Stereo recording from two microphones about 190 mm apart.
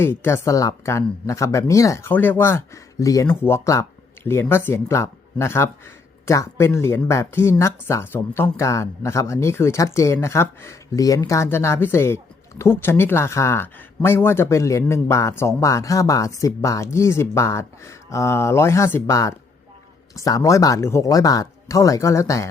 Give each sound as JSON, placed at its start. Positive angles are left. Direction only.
{"t": 0.0, "sound": "speech", "side_deg": 10}